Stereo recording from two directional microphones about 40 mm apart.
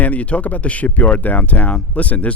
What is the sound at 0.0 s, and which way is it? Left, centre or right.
Speech, left.